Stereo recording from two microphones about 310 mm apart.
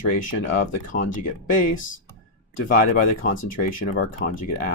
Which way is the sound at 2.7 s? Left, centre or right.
Left.